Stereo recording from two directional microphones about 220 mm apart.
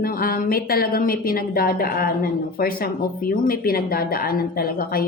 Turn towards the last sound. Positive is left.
turn(degrees=40)  # may be behind; listen again after turning